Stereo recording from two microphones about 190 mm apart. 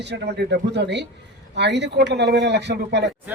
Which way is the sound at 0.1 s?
60° right (ahead or behind).